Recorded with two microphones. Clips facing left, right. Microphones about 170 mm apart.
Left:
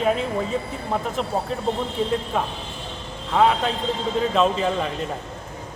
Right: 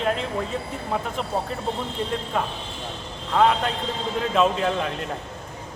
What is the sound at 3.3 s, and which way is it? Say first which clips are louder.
Speech: left 1 dB; 5° left (ahead or behind).